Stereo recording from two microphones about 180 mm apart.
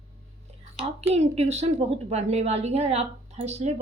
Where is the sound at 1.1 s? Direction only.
35° right (ahead or behind).